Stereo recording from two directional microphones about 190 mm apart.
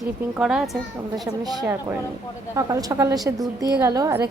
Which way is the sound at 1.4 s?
20° right (ahead or behind).